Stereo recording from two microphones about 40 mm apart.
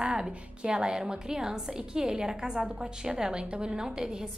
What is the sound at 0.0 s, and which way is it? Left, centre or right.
A woman's voice, right.